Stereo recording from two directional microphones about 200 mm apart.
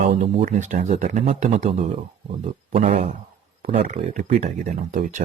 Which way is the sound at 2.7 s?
30° right (ahead or behind).